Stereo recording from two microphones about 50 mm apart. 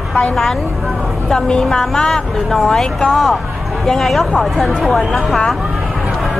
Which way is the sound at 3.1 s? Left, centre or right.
Centre.